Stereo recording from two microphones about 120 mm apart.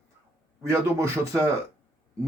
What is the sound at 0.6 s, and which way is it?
Speech, 25° right (ahead or behind).